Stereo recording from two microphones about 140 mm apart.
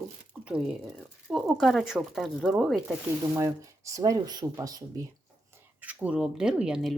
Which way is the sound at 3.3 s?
20° right (ahead or behind).